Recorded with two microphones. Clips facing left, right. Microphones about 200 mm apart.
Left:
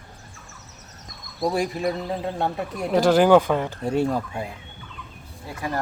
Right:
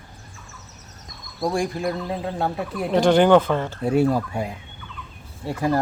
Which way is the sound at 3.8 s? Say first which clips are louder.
Right 3 dB; 10° right (ahead or behind).